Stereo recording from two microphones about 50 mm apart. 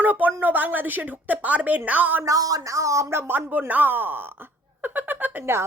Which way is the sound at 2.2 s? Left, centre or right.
Right.